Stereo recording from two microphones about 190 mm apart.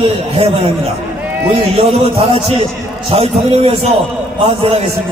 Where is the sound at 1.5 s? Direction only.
30° right (ahead or behind).